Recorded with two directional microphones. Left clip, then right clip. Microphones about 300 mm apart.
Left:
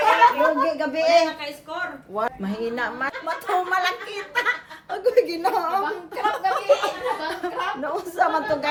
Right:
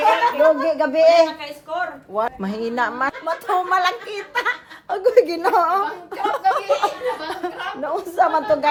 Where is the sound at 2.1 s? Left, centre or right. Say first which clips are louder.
Right 3 dB; centre.